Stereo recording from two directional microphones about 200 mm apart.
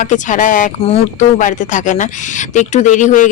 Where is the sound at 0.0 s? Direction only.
40° left (ahead or behind).